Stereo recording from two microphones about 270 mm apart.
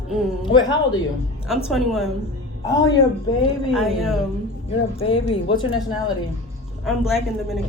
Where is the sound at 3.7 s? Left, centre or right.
Centre.